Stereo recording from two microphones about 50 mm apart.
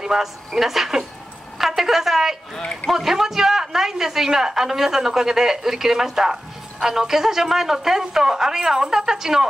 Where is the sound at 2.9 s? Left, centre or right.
Centre.